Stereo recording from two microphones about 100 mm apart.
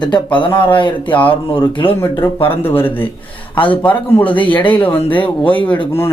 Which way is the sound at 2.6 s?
20° left (ahead or behind).